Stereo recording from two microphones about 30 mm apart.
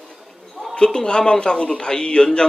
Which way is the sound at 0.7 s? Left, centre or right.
Left.